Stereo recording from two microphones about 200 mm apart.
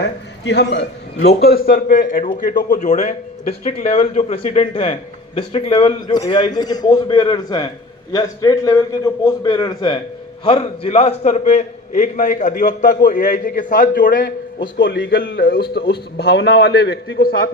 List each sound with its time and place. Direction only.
0.0 s a man's voice: 60° left (ahead or behind)